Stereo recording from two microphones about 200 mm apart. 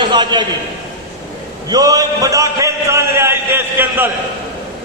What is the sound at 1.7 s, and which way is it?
A man's voice, 20° right (ahead or behind).